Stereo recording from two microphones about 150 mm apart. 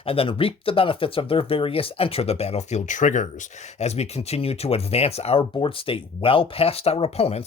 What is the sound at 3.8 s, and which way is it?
Speech, 45° left (ahead or behind).